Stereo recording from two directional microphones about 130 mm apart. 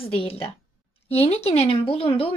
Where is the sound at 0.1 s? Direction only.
45° left (ahead or behind).